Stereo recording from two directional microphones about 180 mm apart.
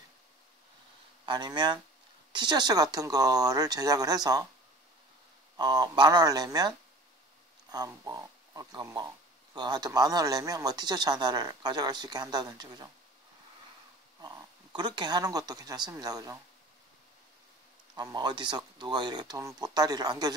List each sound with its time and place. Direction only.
1.2 s speech: 25° right (ahead or behind)
5.6 s speech: 20° right (ahead or behind)
14.8 s speech: 25° right (ahead or behind)
17.9 s speech: 20° right (ahead or behind)